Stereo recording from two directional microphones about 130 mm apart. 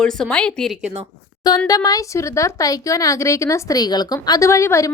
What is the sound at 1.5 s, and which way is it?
Speech, 30° left (ahead or behind).